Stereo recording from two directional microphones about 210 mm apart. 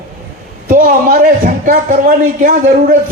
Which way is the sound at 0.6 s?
40° right (ahead or behind).